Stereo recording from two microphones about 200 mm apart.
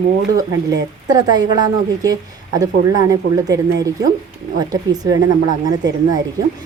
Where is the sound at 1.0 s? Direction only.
20° right (ahead or behind).